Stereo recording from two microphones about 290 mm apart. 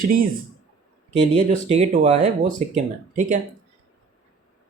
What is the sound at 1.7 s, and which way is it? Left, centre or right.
Speech, right.